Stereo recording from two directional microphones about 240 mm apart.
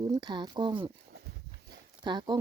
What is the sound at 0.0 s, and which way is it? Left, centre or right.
Speech, centre.